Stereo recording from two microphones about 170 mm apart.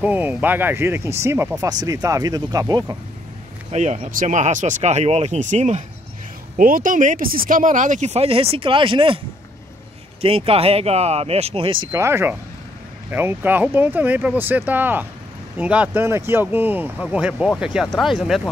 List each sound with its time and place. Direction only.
0.0 s speech: 10° right (ahead or behind)
3.7 s speech: 40° right (ahead or behind)
10.2 s speech: 35° right (ahead or behind); by 18.5 s centre (ahead or behind)